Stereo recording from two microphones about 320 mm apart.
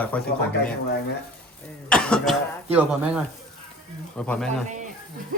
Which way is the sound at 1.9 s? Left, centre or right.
Centre.